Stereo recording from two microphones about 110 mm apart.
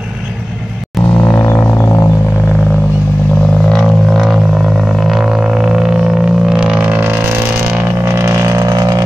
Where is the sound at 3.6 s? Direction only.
Centre (ahead or behind); by 7.3 s 15° right (ahead or behind).